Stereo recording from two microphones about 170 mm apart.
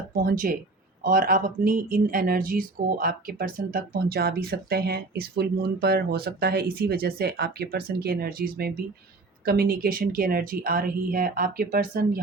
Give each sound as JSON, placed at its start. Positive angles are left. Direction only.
{"t": 0.1, "sound": "speech", "side_deg": -55}